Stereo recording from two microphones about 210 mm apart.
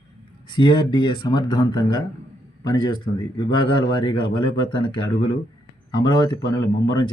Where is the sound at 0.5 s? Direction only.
20° left (ahead or behind).